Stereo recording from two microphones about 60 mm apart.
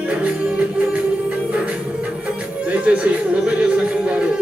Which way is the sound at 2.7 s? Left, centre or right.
Centre.